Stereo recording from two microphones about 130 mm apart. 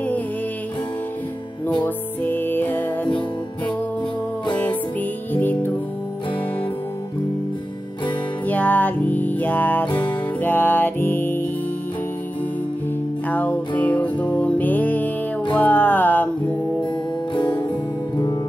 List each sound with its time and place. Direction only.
2.2 s music: 15° left (ahead or behind)
5.3 s music: 15° left (ahead or behind)
8.5 s music: 15° left (ahead or behind)
13.3 s music: 10° left (ahead or behind)
17.3 s music: 35° left (ahead or behind)